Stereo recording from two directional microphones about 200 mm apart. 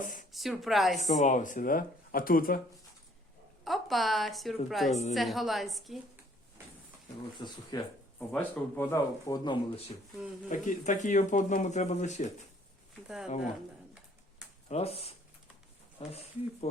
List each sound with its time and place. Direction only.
0.0 s a sound: 40° left (ahead or behind)
0.3 s a woman's voice: centre (ahead or behind)
1.2 s speech: 40° left (ahead or behind)
3.6 s a woman's voice: centre (ahead or behind)
4.9 s speech: 35° left (ahead or behind)
5.1 s a woman's voice: centre (ahead or behind)
7.3 s speech: 20° left (ahead or behind)
8.3 s speech: 10° left (ahead or behind)
10.5 s speech: 40° left (ahead or behind)
14.7 s speech: 30° left (ahead or behind)